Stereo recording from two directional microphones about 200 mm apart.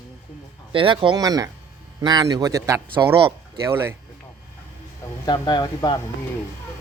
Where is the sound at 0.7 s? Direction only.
25° right (ahead or behind).